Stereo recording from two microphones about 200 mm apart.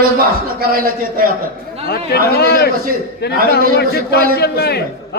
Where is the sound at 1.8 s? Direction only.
50° left (ahead or behind).